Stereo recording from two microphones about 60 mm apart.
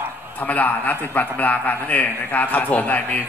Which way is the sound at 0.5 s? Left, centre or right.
Left.